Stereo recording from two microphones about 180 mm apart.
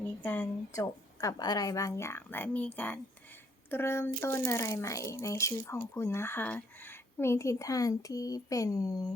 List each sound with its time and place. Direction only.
0.2 s speech: 10° left (ahead or behind)